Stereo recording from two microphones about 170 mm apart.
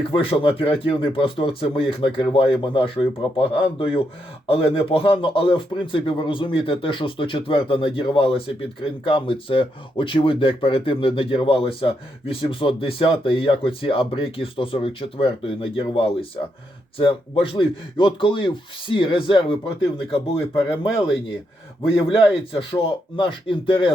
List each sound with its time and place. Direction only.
0.1 s speech: 30° left (ahead or behind)
22.5 s speech: 30° left (ahead or behind)